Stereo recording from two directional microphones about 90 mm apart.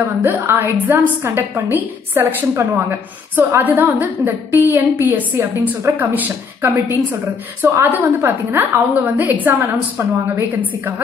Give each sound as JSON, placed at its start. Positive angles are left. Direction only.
{"t": 0.2, "sound": "a woman's voice", "side_deg": -20}